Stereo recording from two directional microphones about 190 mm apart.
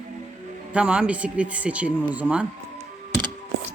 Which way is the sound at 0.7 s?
5° right (ahead or behind).